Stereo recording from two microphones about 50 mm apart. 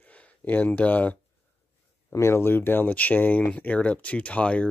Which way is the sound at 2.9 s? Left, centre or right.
Left.